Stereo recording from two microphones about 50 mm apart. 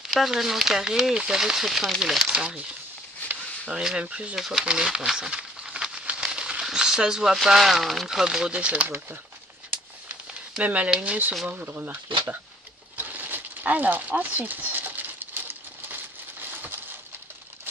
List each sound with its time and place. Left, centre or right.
0.1 s speech: centre
3.6 s speech: right
4.4 s speech: centre
4.6 s crumpling: centre
7.4 s speech: centre
8.5 s speech: right
8.8 s speech: right
10.6 s speech: right
12.9 s a sound: right